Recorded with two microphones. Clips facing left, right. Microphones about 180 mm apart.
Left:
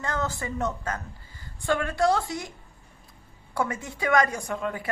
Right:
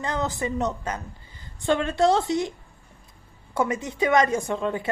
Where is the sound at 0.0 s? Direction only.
20° right (ahead or behind).